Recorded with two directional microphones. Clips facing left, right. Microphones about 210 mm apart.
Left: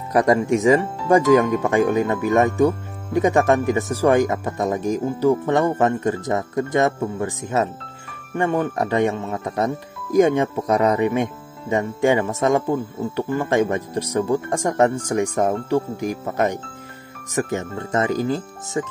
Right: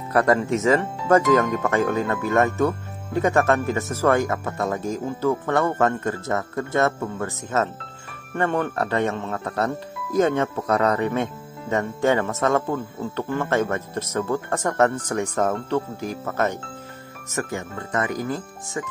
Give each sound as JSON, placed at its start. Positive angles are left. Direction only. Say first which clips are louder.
{"t": 0.1, "sound": "speech", "louder": "left 3 dB", "side_deg": 15}